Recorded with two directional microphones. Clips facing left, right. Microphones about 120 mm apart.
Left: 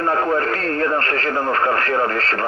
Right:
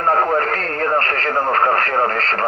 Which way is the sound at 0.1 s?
40° right (ahead or behind).